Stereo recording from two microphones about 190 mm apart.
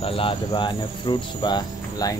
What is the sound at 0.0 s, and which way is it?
Cricket, 30° left (ahead or behind).